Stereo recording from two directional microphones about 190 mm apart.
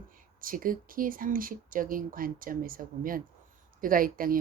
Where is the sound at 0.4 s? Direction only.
45° right (ahead or behind).